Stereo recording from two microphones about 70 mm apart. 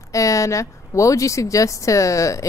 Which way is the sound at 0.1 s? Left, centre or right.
Left.